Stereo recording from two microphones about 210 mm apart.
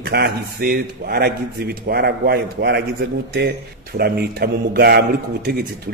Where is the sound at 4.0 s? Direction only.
50° right (ahead or behind).